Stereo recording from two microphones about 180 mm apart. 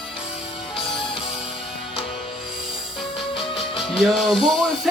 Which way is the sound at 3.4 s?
30° left (ahead or behind).